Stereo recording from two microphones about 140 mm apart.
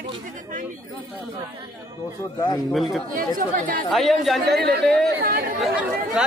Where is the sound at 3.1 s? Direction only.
80° right.